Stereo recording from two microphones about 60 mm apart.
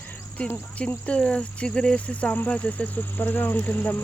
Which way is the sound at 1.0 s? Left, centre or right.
Centre.